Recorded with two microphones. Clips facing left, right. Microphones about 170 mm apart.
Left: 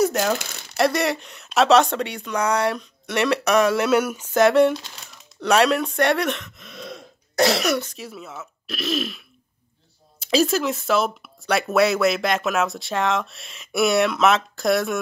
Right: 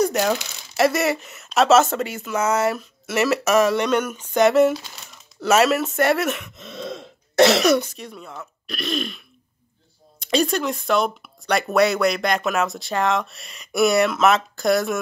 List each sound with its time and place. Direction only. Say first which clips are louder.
0.0 s speech: even; centre (ahead or behind)
6.5 s throat clearing: right 5 dB; 25° right (ahead or behind)
8.0 s speech: even; 5° left (ahead or behind)